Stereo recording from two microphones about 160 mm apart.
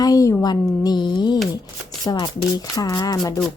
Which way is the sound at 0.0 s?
20° left (ahead or behind).